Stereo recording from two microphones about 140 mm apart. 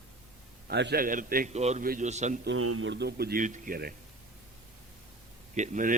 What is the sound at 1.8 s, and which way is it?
Speech, 90° right.